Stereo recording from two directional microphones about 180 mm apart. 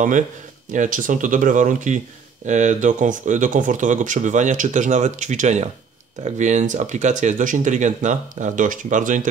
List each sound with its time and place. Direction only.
0.7 s speech: 45° right (ahead or behind)